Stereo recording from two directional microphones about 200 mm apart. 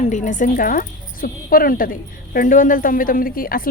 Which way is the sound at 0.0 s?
40° left (ahead or behind).